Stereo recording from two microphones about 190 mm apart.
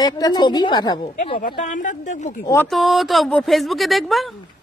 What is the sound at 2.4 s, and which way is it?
Speech, 15° left (ahead or behind).